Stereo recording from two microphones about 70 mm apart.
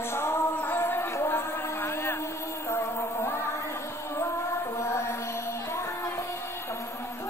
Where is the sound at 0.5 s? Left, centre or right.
Left.